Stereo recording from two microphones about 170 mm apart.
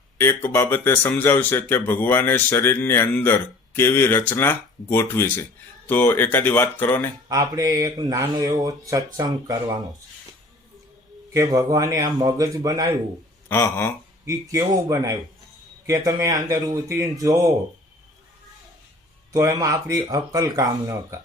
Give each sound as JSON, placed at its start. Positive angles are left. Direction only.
{"t": 0.2, "sound": "speech", "side_deg": 15}
{"t": 7.3, "sound": "speech", "side_deg": -20}
{"t": 11.3, "sound": "speech", "side_deg": -20}
{"t": 13.5, "sound": "speech", "side_deg": 15}
{"t": 14.3, "sound": "speech", "side_deg": -20}
{"t": 19.3, "sound": "speech", "side_deg": -20}